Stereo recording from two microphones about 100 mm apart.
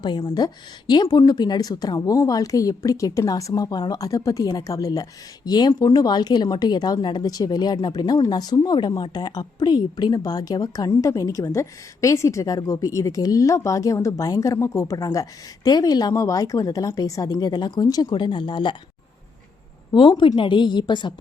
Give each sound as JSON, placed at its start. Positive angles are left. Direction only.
{"t": 0.2, "sound": "speech", "side_deg": 45}
{"t": 19.9, "sound": "speech", "side_deg": 55}